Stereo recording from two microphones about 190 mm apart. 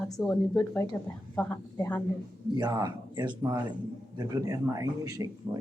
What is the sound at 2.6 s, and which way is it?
Speech, 20° right (ahead or behind).